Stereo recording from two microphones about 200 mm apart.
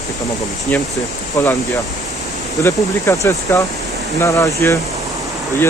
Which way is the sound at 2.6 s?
15° left (ahead or behind).